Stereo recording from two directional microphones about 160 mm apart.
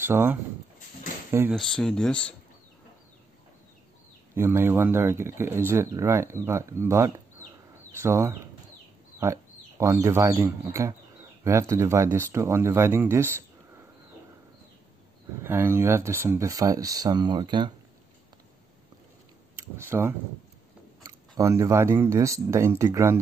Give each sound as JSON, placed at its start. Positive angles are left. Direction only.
{"t": 0.0, "sound": "speech", "side_deg": -15}
{"t": 1.5, "sound": "speech", "side_deg": 5}
{"t": 4.4, "sound": "speech", "side_deg": -15}
{"t": 15.4, "sound": "speech", "side_deg": -15}
{"t": 19.5, "sound": "speech", "side_deg": -15}